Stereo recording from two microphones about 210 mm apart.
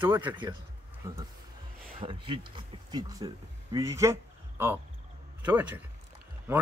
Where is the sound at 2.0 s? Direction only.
25° right (ahead or behind).